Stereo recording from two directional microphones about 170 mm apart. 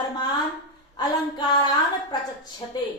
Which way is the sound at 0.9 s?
30° left (ahead or behind).